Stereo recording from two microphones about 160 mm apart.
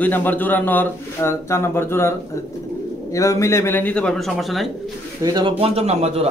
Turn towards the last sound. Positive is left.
turn(degrees=-40)  # may be behind; listen again after turning